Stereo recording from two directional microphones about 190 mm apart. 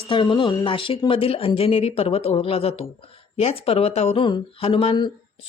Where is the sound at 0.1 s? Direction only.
25° left (ahead or behind).